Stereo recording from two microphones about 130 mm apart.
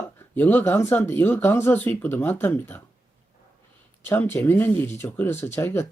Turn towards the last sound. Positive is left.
turn(degrees=20)  # may be behind; listen again after turning